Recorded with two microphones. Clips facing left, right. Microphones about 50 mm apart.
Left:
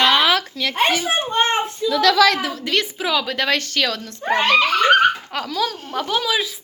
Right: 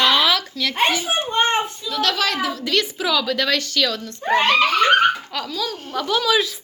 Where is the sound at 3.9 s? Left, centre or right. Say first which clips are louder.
Right 1 dB; left.